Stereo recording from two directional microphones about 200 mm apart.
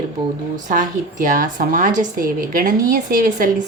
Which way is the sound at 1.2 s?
40° right (ahead or behind).